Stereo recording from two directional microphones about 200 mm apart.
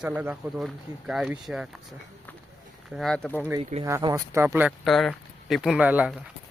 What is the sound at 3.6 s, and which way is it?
Speech, 30° right (ahead or behind).